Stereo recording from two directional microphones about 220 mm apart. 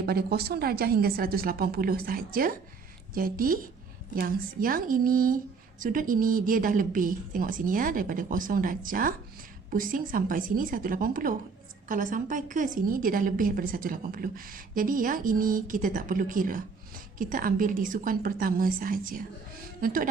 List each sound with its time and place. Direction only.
0.0 s a woman's voice: 45° right (ahead or behind)